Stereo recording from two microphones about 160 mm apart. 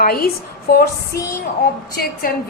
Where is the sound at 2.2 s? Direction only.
65° left (ahead or behind).